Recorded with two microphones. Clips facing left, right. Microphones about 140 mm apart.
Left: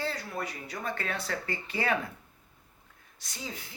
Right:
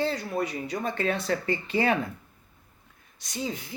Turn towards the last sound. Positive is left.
turn(degrees=-20)  # may be behind; listen again after turning